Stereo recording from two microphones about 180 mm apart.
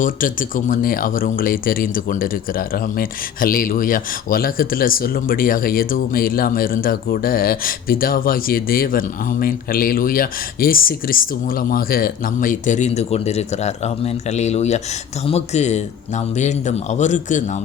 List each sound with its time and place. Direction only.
0.0 s speech: 50° left (ahead or behind)